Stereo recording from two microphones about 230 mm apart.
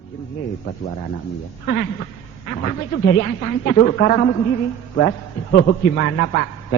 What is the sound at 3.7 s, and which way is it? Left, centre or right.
Speech, left.